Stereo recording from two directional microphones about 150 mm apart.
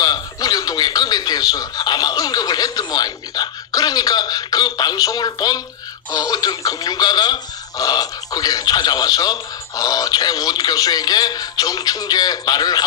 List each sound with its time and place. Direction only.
0.0 s speech: 25° left (ahead or behind)